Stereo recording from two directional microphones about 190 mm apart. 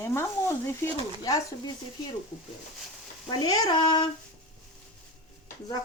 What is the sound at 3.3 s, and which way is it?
Speech, 20° left (ahead or behind).